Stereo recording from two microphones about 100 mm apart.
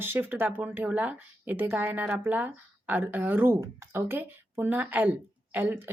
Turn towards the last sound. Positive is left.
turn(degrees=-20)  # may be behind; listen again after turning